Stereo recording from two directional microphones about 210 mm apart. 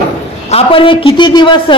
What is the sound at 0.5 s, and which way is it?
A man's voice, 25° left (ahead or behind).